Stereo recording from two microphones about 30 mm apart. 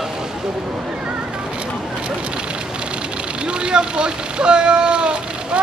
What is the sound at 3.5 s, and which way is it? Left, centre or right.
Speech, right.